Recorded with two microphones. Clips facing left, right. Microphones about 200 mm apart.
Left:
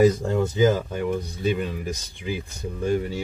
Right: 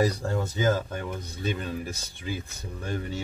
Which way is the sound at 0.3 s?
15° left (ahead or behind).